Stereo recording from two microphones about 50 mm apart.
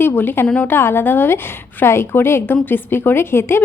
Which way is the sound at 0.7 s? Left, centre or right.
Left.